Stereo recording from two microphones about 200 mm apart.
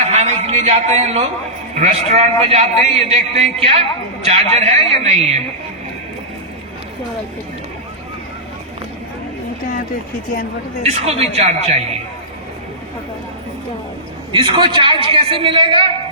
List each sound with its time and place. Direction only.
0.1 s a sound: 35° right (ahead or behind)
1.7 s a man's voice: 30° right (ahead or behind)
10.8 s a man's voice: 30° right (ahead or behind)
14.3 s a man's voice: 25° right (ahead or behind)